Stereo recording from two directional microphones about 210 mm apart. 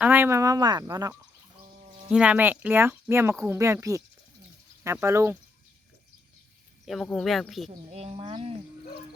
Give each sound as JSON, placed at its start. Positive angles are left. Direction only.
{"t": 0.0, "sound": "speech", "side_deg": -10}
{"t": 2.0, "sound": "speech", "side_deg": -5}
{"t": 6.8, "sound": "speech", "side_deg": 0}
{"t": 7.9, "sound": "speech", "side_deg": -30}